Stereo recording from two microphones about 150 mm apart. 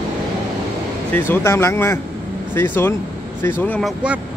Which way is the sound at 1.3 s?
15° left (ahead or behind).